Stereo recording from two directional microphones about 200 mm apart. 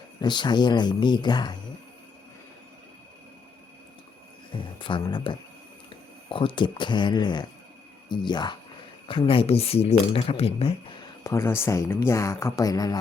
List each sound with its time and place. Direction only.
0.2 s speech: 20° left (ahead or behind)
4.5 s a sound: 25° left (ahead or behind)
5.9 s speech: 25° left (ahead or behind)
11.2 s speech: 15° left (ahead or behind)